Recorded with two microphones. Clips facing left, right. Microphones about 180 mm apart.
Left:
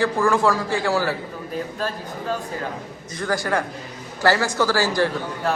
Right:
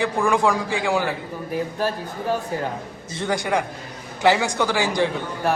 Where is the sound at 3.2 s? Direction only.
20° right (ahead or behind).